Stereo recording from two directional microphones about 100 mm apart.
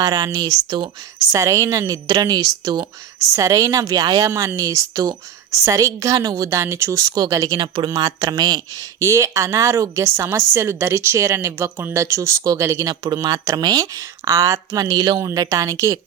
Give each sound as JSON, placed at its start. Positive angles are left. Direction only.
{"t": 0.0, "sound": "a woman's voice", "side_deg": -40}
{"t": 1.3, "sound": "a woman's voice", "side_deg": -30}
{"t": 12.9, "sound": "a woman's voice", "side_deg": -45}
{"t": 15.2, "sound": "a woman's voice", "side_deg": -30}